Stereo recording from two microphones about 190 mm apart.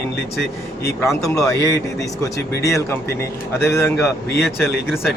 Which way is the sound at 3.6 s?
15° left (ahead or behind).